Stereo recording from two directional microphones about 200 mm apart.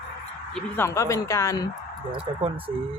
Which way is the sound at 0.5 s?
15° left (ahead or behind).